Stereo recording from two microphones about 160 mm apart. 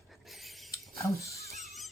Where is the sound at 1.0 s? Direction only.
20° left (ahead or behind).